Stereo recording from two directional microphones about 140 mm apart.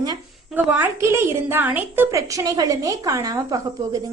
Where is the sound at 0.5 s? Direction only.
15° right (ahead or behind).